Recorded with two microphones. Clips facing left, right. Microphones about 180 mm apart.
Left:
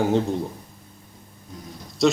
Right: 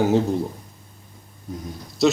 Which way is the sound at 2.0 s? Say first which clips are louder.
Right 1 dB; centre (ahead or behind).